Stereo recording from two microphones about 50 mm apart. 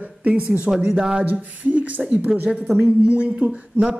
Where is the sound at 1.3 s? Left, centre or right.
Right.